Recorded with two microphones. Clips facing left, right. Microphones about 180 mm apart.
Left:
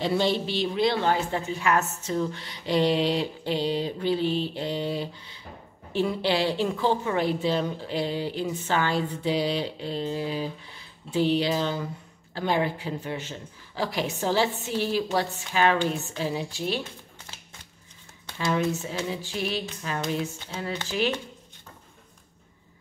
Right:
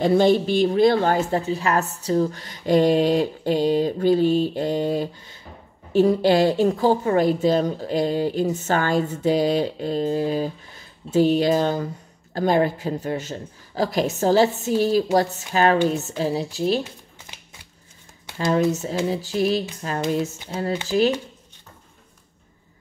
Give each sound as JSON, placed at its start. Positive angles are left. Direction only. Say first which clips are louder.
{"t": 0.0, "sound": "a woman's voice", "louder": "right 8 dB", "side_deg": -50}
{"t": 18.4, "sound": "a woman's voice", "louder": "right 6 dB", "side_deg": -40}